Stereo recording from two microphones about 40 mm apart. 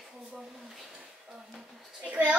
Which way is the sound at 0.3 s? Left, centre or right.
Centre.